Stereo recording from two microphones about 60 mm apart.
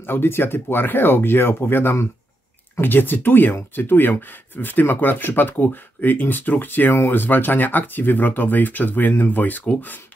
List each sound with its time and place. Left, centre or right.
0.0 s speech: left